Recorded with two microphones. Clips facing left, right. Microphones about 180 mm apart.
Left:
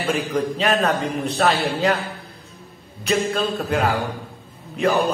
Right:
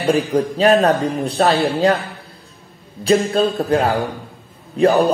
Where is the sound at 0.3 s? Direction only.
35° right (ahead or behind).